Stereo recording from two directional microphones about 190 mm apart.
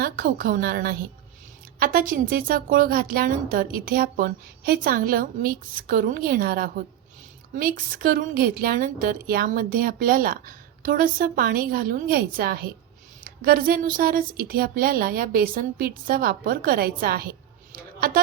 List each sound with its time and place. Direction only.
0.0 s a woman's voice: 50° right (ahead or behind)